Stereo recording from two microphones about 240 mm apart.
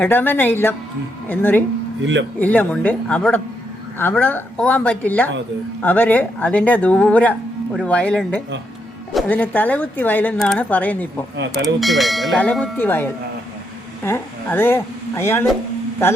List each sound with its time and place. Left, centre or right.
0.0 s speech: centre
2.0 s speech: right
2.4 s speech: centre
11.3 s speech: right
11.8 s speech: centre